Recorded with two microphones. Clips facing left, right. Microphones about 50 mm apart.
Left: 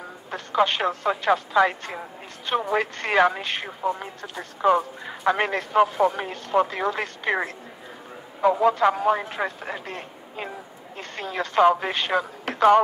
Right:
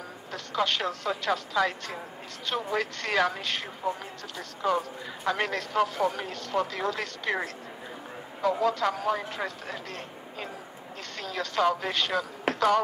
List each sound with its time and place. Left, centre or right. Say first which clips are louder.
0.3 s speech: left 6 dB; left